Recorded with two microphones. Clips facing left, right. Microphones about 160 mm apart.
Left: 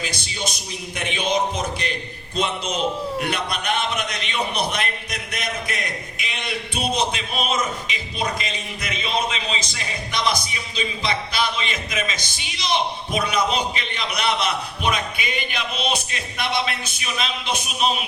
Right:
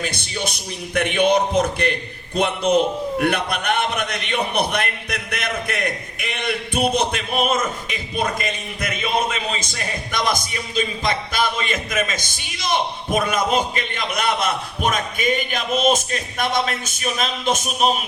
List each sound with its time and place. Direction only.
0.0 s speech: 60° right (ahead or behind)